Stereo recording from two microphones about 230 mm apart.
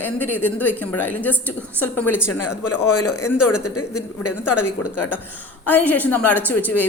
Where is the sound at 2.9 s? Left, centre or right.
Left.